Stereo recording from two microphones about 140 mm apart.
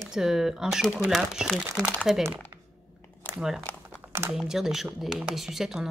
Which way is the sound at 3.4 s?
5° right (ahead or behind).